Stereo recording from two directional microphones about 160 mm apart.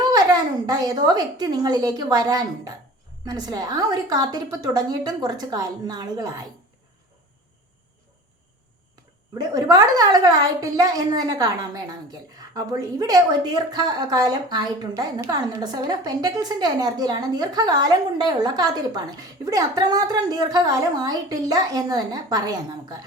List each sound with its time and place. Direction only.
0.1 s a woman's voice: 25° right (ahead or behind)
9.4 s a woman's voice: 25° right (ahead or behind)